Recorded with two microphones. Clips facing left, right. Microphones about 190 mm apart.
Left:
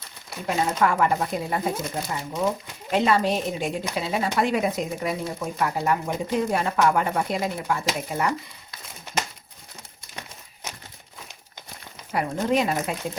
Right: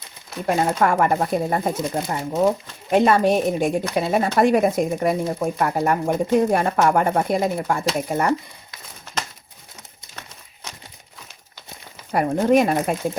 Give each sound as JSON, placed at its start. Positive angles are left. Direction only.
{"t": 0.4, "sound": "speech", "side_deg": -50}
{"t": 12.1, "sound": "speech", "side_deg": -50}